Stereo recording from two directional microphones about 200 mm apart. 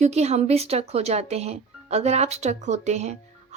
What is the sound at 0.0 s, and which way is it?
Speech, 35° right (ahead or behind).